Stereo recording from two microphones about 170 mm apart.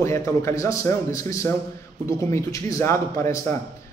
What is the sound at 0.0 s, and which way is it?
A man's voice, 15° left (ahead or behind).